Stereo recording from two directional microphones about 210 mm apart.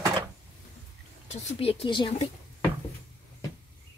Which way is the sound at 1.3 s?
25° left (ahead or behind).